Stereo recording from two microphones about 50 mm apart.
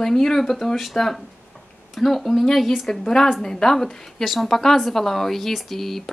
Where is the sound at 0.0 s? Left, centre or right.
Centre.